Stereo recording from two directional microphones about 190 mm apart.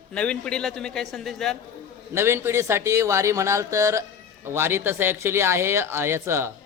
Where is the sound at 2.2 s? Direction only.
15° right (ahead or behind).